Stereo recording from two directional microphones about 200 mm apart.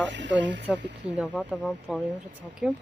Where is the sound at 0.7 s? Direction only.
Centre (ahead or behind).